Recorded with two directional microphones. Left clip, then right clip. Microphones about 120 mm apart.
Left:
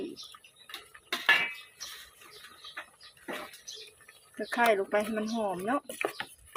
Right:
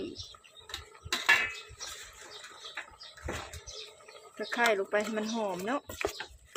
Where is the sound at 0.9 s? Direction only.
45° right (ahead or behind).